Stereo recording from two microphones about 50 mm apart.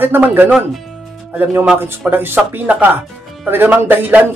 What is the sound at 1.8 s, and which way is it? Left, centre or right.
Speech, right.